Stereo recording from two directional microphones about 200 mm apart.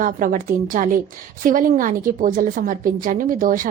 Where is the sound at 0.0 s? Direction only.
40° right (ahead or behind).